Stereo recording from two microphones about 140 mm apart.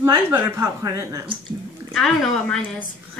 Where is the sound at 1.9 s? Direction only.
5° left (ahead or behind).